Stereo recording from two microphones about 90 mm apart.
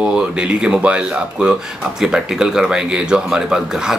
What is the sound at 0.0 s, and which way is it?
Speech, 10° right (ahead or behind).